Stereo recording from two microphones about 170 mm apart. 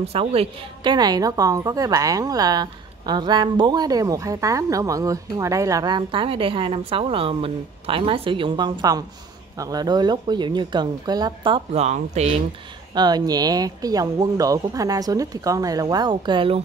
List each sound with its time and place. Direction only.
0.0 s a woman's voice: 35° right (ahead or behind)
12.9 s a woman's voice: 25° right (ahead or behind)